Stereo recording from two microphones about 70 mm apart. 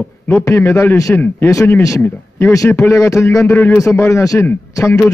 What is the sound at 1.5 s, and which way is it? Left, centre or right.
A man's voice, left.